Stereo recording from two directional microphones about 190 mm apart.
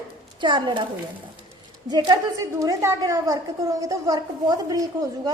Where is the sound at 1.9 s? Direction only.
25° right (ahead or behind).